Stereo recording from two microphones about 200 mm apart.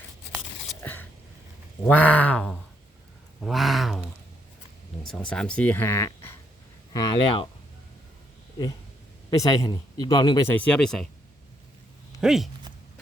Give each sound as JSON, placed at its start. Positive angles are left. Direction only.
{"t": 0.8, "sound": "a sound", "side_deg": 10}
{"t": 1.9, "sound": "a man's voice", "side_deg": 5}
{"t": 5.3, "sound": "speech", "side_deg": 5}
{"t": 9.3, "sound": "a man's voice", "side_deg": 15}
{"t": 12.2, "sound": "speech", "side_deg": 0}